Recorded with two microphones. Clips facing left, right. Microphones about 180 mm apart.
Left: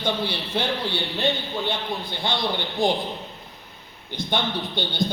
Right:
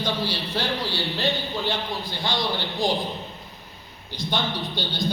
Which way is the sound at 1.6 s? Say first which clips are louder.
Even; 55° left (ahead or behind).